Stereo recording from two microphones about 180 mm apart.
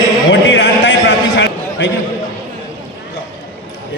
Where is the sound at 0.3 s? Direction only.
80° left.